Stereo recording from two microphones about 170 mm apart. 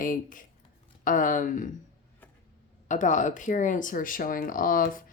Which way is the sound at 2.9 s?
45° left (ahead or behind).